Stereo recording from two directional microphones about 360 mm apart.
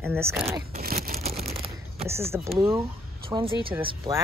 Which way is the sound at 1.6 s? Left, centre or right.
Centre.